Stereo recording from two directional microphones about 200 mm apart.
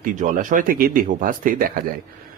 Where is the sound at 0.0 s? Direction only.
40° right (ahead or behind).